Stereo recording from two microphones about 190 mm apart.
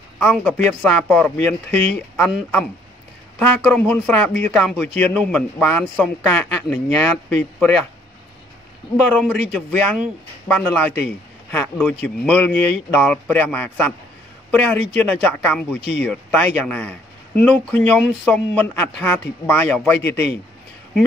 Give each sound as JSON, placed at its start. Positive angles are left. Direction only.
{"t": 0.2, "sound": "a man's voice", "side_deg": 5}
{"t": 9.1, "sound": "speech", "side_deg": 5}
{"t": 10.5, "sound": "a man's voice", "side_deg": 5}
{"t": 15.8, "sound": "speech", "side_deg": 65}
{"t": 16.1, "sound": "a man's voice", "side_deg": 5}